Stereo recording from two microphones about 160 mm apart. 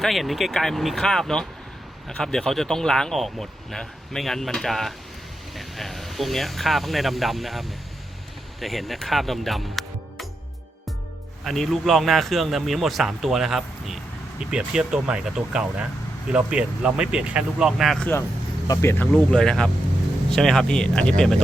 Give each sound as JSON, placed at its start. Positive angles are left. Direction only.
{"t": 0.0, "sound": "speech", "side_deg": 0}
{"t": 11.4, "sound": "speech", "side_deg": 0}
{"t": 18.7, "sound": "speech", "side_deg": 15}